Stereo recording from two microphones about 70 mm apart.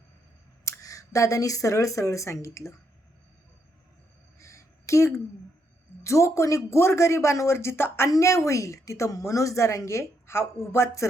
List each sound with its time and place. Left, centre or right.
0.6 s speech: left
4.4 s a sound: left
6.0 s a woman's voice: left
8.1 s a woman's voice: left